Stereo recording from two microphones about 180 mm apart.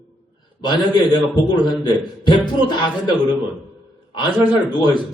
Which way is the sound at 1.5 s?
25° left (ahead or behind).